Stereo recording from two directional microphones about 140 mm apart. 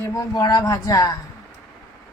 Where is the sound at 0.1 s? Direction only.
25° left (ahead or behind).